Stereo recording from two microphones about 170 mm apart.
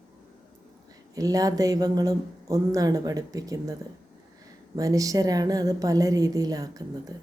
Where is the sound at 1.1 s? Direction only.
20° right (ahead or behind).